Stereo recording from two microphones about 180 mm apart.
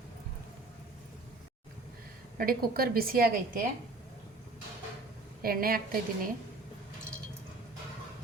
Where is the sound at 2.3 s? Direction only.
55° right (ahead or behind).